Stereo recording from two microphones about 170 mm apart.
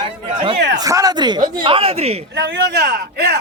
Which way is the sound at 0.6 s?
90° right.